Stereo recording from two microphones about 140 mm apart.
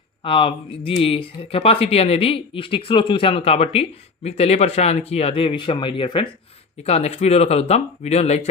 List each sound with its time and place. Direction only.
0.2 s speech: 40° left (ahead or behind)
6.8 s speech: 50° left (ahead or behind)